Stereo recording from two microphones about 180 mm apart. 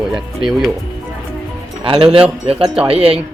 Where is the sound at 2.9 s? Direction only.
30° right (ahead or behind).